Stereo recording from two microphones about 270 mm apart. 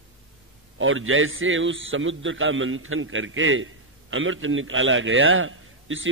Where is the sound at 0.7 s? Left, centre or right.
Right.